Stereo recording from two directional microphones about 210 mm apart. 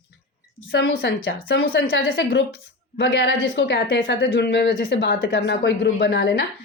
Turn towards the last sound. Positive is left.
turn(degrees=55)  # may be behind; listen again after turning